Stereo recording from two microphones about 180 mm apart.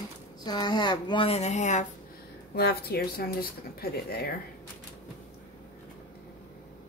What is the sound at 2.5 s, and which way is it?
Speech, 60° left (ahead or behind).